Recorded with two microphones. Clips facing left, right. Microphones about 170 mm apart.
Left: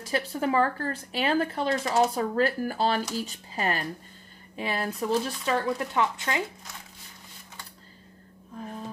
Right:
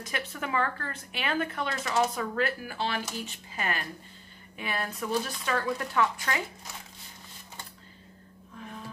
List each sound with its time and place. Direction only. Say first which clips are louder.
0.0 s speech: left 7 dB; 35° left (ahead or behind)
8.5 s music: left 5 dB; 35° left (ahead or behind)